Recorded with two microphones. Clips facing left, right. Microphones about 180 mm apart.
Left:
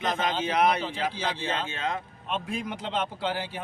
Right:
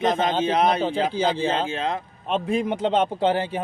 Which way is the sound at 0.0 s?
30° right (ahead or behind).